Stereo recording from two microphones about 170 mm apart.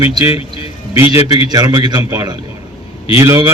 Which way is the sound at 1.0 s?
35° left (ahead or behind).